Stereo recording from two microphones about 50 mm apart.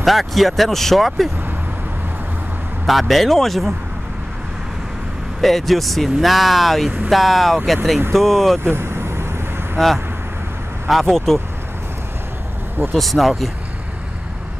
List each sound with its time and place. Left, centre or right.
0.0 s speech: centre
2.9 s speech: centre
5.4 s speech: centre
8.6 s vehicle: right
9.8 s speech: centre
12.9 s speech: centre